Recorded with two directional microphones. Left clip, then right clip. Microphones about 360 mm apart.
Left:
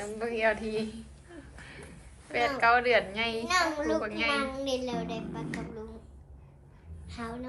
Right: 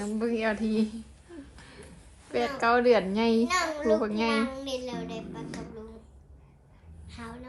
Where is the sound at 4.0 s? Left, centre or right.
Centre.